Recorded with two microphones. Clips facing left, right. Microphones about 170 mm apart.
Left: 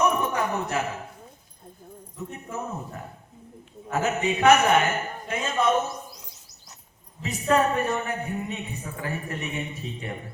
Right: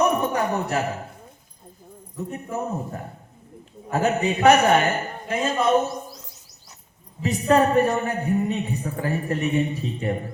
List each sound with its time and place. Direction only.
0.0 s a sound: 35° right (ahead or behind)
2.5 s a woman's voice: 35° right (ahead or behind)
7.2 s a woman's voice: 35° right (ahead or behind)